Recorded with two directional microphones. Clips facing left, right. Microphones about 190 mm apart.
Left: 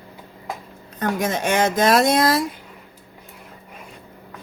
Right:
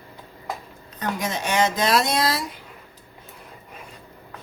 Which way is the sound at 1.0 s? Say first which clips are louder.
Left 5 dB; 50° left (ahead or behind).